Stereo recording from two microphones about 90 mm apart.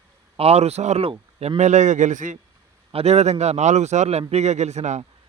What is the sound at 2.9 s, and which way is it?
Speech, 90° right.